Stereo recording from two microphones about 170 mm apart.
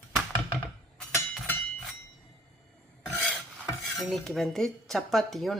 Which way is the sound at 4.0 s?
Centre (ahead or behind).